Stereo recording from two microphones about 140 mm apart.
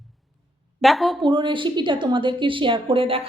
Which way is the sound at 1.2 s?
35° right (ahead or behind).